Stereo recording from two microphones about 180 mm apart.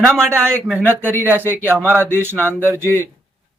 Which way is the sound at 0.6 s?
5° right (ahead or behind).